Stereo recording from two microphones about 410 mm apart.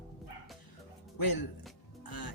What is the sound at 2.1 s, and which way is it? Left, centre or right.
Music, left.